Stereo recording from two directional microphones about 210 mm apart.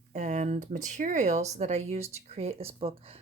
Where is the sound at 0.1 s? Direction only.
35° right (ahead or behind).